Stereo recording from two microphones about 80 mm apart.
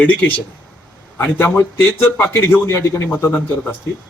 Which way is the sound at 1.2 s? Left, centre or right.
Left.